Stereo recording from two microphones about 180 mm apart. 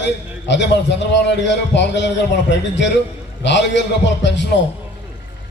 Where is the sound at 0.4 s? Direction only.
75° left (ahead or behind).